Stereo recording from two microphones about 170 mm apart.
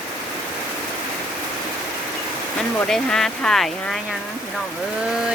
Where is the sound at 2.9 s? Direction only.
5° left (ahead or behind).